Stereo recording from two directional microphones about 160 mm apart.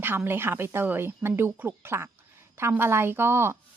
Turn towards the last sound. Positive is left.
turn(degrees=-15)  # may be behind; listen again after turning